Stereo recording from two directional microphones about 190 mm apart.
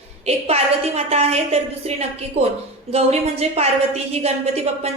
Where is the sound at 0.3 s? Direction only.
35° right (ahead or behind).